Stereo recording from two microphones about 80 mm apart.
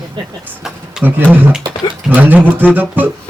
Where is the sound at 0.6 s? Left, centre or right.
Centre.